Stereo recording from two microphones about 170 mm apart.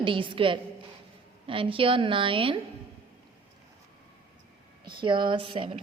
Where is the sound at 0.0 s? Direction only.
30° right (ahead or behind).